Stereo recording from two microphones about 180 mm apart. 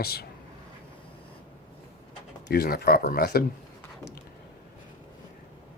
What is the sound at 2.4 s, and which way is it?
Speech, 60° left (ahead or behind).